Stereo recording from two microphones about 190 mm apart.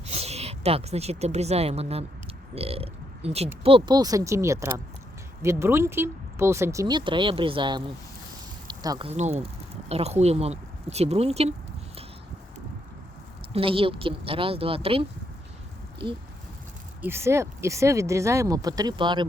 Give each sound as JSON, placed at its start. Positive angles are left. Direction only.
{"t": 0.0, "sound": "speech", "side_deg": -35}
{"t": 8.6, "sound": "a sound", "side_deg": -20}
{"t": 9.0, "sound": "speech", "side_deg": -35}
{"t": 13.5, "sound": "speech", "side_deg": -30}
{"t": 17.0, "sound": "speech", "side_deg": -10}